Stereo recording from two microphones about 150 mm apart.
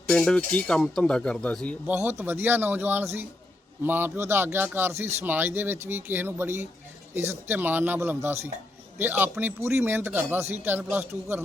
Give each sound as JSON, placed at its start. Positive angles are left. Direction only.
{"t": 0.1, "sound": "speech", "side_deg": 5}
{"t": 1.9, "sound": "speech", "side_deg": -15}